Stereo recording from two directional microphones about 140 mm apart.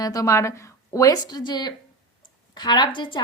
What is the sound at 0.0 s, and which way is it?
A woman's voice, 25° left (ahead or behind).